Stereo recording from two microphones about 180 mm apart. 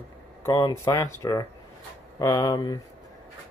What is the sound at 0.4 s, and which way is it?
Speech, 20° left (ahead or behind).